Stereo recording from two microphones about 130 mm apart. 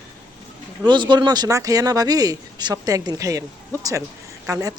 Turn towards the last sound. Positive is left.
turn(degrees=-25)  # may be behind; listen again after turning